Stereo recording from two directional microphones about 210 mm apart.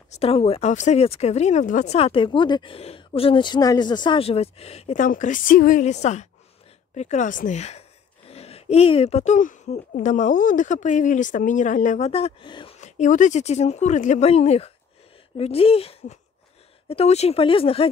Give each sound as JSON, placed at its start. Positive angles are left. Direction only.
{"t": 0.1, "sound": "speech", "side_deg": 30}
{"t": 12.8, "sound": "speech", "side_deg": 35}